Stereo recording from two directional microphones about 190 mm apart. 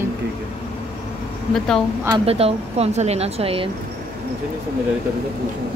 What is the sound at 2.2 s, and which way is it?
Speech, 30° right (ahead or behind).